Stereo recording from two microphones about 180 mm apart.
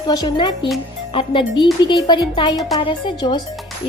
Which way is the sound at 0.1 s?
25° left (ahead or behind).